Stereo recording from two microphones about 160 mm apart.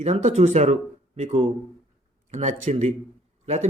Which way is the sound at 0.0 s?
45° right (ahead or behind).